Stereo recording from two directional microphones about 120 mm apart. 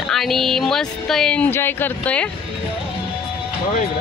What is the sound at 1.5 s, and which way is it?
Speech, 20° left (ahead or behind).